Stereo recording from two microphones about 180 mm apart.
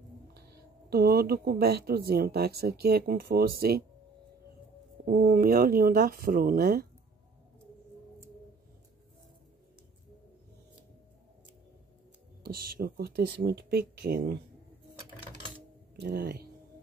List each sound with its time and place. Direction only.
0.3 s speech: 65° right (ahead or behind)
5.0 s speech: 55° right (ahead or behind)
12.6 s speech: 55° right (ahead or behind)
16.0 s speech: 60° right (ahead or behind)